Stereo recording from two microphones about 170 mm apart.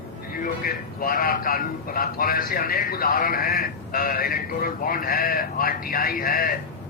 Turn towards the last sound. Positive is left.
turn(degrees=60)  # may be behind; listen again after turning